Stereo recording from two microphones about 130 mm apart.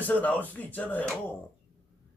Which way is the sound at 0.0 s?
10° left (ahead or behind).